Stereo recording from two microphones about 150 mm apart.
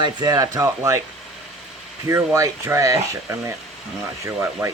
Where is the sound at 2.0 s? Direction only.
20° right (ahead or behind).